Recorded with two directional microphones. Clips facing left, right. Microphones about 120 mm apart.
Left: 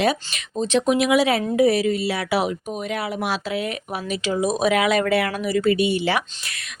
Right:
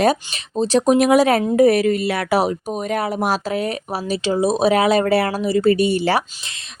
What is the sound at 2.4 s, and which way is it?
Speech, 40° right (ahead or behind).